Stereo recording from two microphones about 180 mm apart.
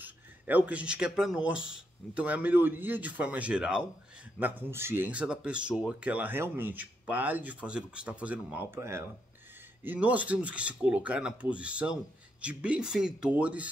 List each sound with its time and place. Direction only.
0.0 s speech: 10° right (ahead or behind)